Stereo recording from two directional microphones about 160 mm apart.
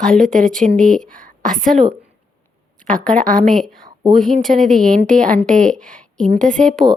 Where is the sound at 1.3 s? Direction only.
60° right (ahead or behind).